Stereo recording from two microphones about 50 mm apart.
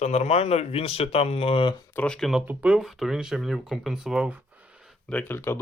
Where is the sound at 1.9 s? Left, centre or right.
Left.